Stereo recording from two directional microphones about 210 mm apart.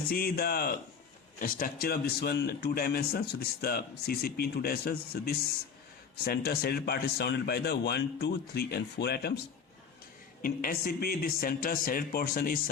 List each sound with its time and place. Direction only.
0.1 s speech: 45° left (ahead or behind)
10.4 s speech: 45° left (ahead or behind)